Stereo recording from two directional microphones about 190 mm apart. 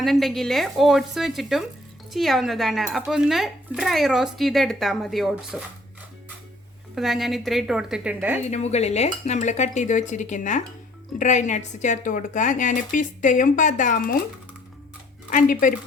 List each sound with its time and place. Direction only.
0.0 s speech: centre (ahead or behind)
6.9 s speech: centre (ahead or behind)
8.4 s a woman's voice: 35° left (ahead or behind)
15.3 s speech: 45° left (ahead or behind)